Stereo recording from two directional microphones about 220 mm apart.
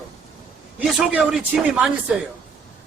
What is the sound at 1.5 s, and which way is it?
Speech, 5° right (ahead or behind).